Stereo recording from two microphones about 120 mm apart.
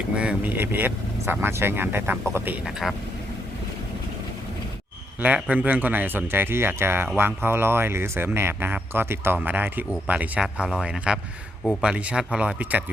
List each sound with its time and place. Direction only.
0.2 s speech: 10° right (ahead or behind)
5.2 s speech: 10° right (ahead or behind)